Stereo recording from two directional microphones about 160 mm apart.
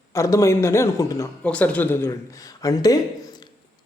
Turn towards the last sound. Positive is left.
turn(degrees=25)  # may be behind; listen again after turning